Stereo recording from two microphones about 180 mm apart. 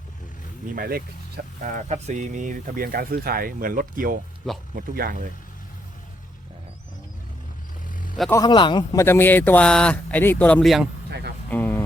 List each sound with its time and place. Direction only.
0.8 s speech: 55° right (ahead or behind)
1.6 s speech: 45° right (ahead or behind)
7.9 s vehicle: 50° left (ahead or behind)
8.3 s speech: 25° left (ahead or behind)